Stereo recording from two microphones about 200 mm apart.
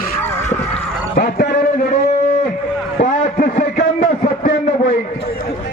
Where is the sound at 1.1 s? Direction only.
45° left (ahead or behind).